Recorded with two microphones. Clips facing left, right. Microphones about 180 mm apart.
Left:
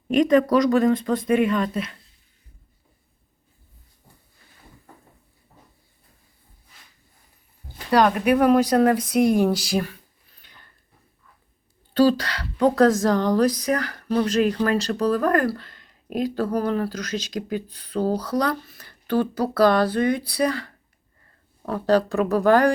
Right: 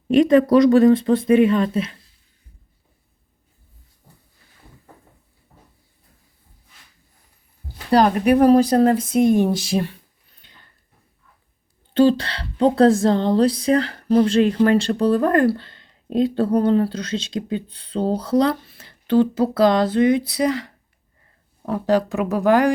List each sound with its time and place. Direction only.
0.1 s speech: 30° right (ahead or behind)
7.9 s speech: 35° right (ahead or behind)
10.4 s a sound: 25° right (ahead or behind)
11.9 s speech: 25° right (ahead or behind)